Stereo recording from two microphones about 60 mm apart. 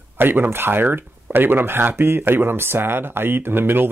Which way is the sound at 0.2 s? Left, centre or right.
Right.